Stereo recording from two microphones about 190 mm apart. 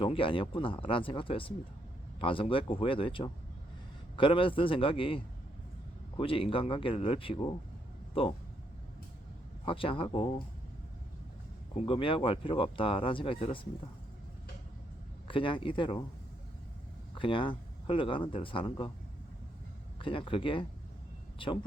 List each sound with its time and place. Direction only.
0.0 s speech: 30° left (ahead or behind)
9.6 s speech: 30° left (ahead or behind)
11.9 s speech: 30° left (ahead or behind)
15.3 s speech: 25° left (ahead or behind)
17.2 s speech: 25° left (ahead or behind)
20.0 s speech: 25° left (ahead or behind)